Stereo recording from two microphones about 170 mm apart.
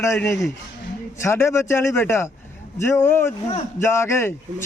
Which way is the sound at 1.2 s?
15° left (ahead or behind).